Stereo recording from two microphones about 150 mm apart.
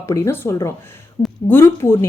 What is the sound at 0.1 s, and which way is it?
Speech, 20° left (ahead or behind).